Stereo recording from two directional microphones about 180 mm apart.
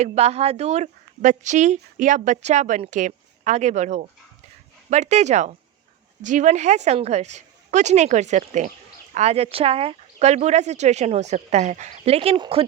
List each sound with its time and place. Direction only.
0.0 s speech: 35° right (ahead or behind)